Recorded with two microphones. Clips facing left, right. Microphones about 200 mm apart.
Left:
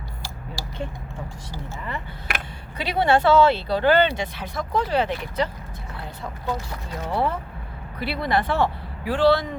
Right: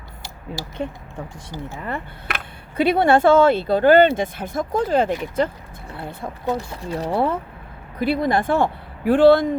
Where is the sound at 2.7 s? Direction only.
55° right (ahead or behind).